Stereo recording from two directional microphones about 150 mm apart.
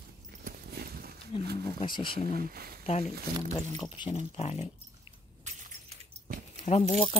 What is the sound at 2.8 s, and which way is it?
Speech, 40° left (ahead or behind).